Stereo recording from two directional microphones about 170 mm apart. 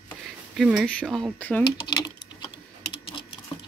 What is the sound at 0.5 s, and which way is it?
Speech, 5° right (ahead or behind).